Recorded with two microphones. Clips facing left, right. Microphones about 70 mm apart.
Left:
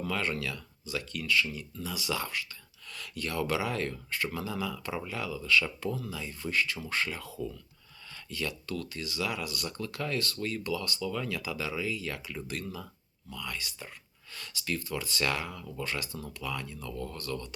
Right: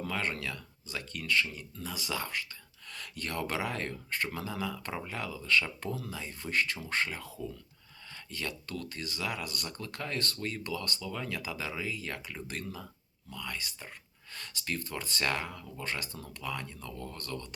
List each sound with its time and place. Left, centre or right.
0.0 s speech: right
6.9 s speech: right
11.0 s speech: right